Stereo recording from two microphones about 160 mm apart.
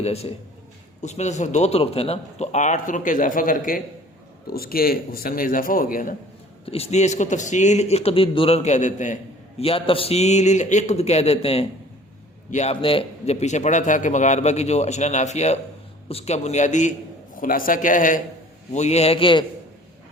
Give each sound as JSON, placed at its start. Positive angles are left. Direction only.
{"t": 0.0, "sound": "a man's voice", "side_deg": 40}
{"t": 4.4, "sound": "a man's voice", "side_deg": 70}
{"t": 6.7, "sound": "a man's voice", "side_deg": 40}
{"t": 9.6, "sound": "a man's voice", "side_deg": 35}
{"t": 18.7, "sound": "a man's voice", "side_deg": 45}